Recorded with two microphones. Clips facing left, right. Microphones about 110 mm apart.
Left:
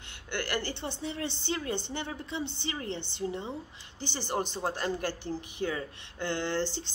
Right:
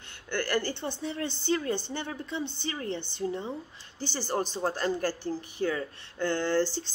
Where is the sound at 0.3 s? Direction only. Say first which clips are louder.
Right 4 dB; 20° left (ahead or behind).